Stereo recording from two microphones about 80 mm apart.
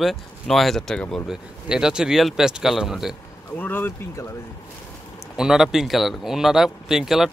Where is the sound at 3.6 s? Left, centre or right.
Left.